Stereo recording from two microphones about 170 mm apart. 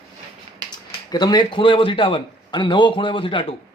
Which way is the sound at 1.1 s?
25° left (ahead or behind).